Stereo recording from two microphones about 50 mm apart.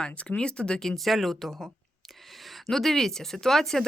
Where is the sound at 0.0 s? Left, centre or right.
Left.